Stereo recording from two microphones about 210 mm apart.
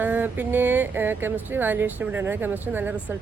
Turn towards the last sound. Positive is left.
turn(degrees=-10)  # may be behind; listen again after turning